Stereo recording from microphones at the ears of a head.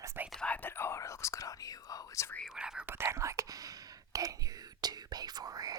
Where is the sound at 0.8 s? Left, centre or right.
Left.